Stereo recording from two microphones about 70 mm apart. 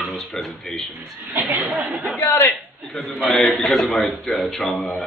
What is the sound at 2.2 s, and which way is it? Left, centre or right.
Speech, left.